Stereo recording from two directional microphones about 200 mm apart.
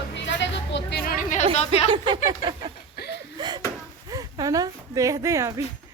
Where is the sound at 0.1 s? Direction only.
65° left (ahead or behind); by 1.5 s 40° left (ahead or behind).